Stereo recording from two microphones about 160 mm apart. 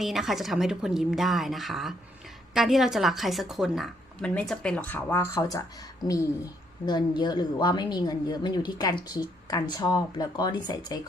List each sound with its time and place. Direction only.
0.0 s a woman's voice: centre (ahead or behind); by 11.0 s 25° left (ahead or behind)